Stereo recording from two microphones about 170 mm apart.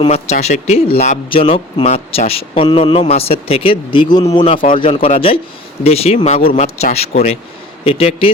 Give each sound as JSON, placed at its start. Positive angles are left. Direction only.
{"t": 0.1, "sound": "speech", "side_deg": 40}